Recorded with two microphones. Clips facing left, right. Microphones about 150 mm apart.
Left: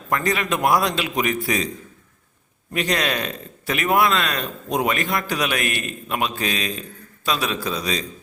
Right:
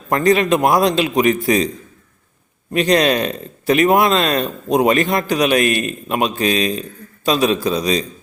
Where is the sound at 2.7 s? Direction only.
25° right (ahead or behind).